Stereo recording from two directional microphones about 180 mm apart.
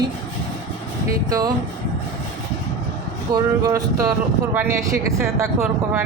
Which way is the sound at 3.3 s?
20° right (ahead or behind).